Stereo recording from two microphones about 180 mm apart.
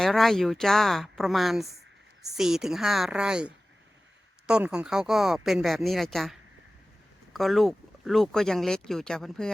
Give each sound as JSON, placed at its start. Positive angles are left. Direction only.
{"t": 0.0, "sound": "speech", "side_deg": 0}
{"t": 7.3, "sound": "speech", "side_deg": 0}